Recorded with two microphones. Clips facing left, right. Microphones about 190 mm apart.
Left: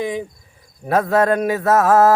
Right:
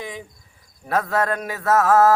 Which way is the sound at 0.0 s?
20° left (ahead or behind).